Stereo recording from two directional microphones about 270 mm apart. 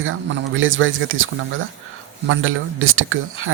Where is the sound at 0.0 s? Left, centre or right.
Right.